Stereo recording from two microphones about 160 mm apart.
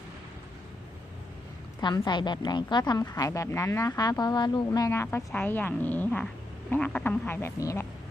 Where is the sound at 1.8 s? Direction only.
25° left (ahead or behind).